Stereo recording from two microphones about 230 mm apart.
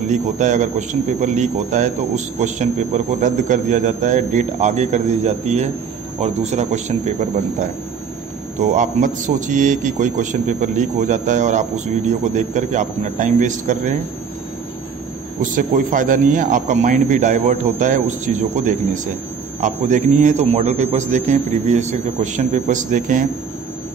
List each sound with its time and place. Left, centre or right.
0.1 s speech: right
8.5 s speech: right
15.5 s speech: right